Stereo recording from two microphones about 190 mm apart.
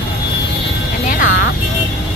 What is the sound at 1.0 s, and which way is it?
Music, 45° left (ahead or behind).